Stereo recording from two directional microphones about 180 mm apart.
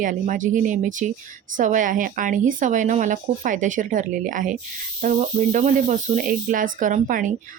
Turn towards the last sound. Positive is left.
turn(degrees=-45)  # may be behind; listen again after turning